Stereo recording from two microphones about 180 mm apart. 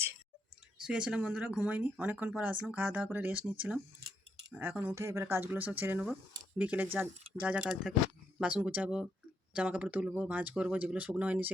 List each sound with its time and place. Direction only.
0.8 s speech: 5° right (ahead or behind)